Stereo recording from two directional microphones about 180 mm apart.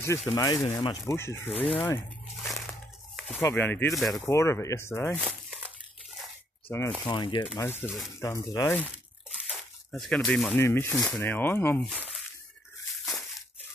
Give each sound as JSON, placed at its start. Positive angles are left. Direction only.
{"t": 0.3, "sound": "speech", "side_deg": 20}
{"t": 2.4, "sound": "a sound", "side_deg": 0}
{"t": 3.3, "sound": "speech", "side_deg": 10}
{"t": 4.3, "sound": "speech", "side_deg": 15}
{"t": 5.2, "sound": "crumpling", "side_deg": -5}
{"t": 6.7, "sound": "speech", "side_deg": 15}
{"t": 7.1, "sound": "speech", "side_deg": 25}
{"t": 7.5, "sound": "speech", "side_deg": 15}
{"t": 9.3, "sound": "speech", "side_deg": 0}
{"t": 11.8, "sound": "speech", "side_deg": -5}